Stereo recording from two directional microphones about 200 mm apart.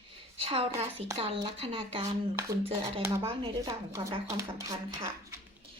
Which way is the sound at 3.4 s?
20° right (ahead or behind).